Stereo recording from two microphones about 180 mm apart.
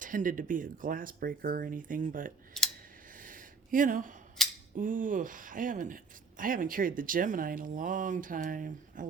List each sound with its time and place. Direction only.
0.0 s speech: 45° right (ahead or behind)
2.5 s scissors: centre (ahead or behind)
3.2 s a sound: 50° right (ahead or behind)
4.4 s scissors: 5° left (ahead or behind)
4.8 s speech: 50° right (ahead or behind)